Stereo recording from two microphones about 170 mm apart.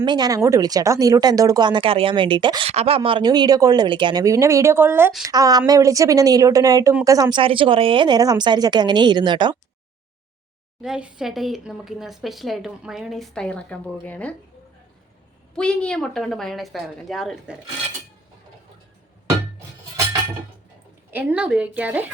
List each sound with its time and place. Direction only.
0.0 s speech: 25° right (ahead or behind)
10.8 s a woman's voice: 5° right (ahead or behind)
15.5 s a woman's voice: 5° left (ahead or behind)
21.1 s a woman's voice: 10° right (ahead or behind)